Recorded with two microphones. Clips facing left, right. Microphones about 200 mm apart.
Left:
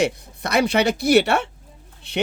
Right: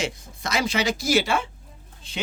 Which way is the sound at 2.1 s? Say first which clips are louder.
Left 9 dB; 65° left (ahead or behind).